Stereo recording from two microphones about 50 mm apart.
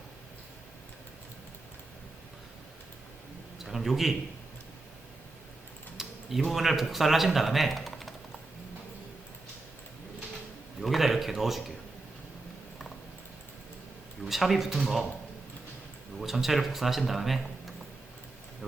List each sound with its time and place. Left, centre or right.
3.6 s speech: centre
6.0 s speech: centre
10.8 s speech: centre
14.3 s speech: centre
16.2 s speech: centre